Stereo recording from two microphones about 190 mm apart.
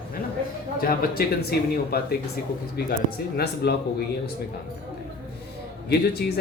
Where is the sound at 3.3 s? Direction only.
60° left (ahead or behind).